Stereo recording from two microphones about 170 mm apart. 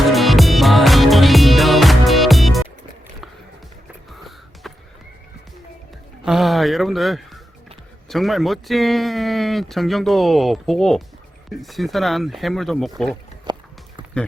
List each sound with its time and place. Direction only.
0.1 s music: centre (ahead or behind)
4.6 s neigh: centre (ahead or behind)
6.2 s a sound: centre (ahead or behind)
8.1 s speech: centre (ahead or behind)
13.5 s walk: 25° right (ahead or behind)